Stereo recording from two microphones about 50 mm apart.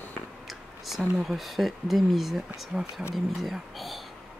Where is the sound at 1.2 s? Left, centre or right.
Centre.